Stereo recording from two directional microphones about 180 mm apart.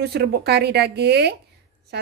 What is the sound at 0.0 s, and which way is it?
Speech, 65° right (ahead or behind).